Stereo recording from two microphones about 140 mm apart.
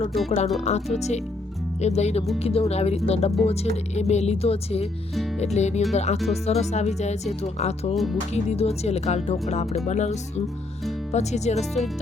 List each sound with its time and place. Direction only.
0.3 s speech: 50° left (ahead or behind)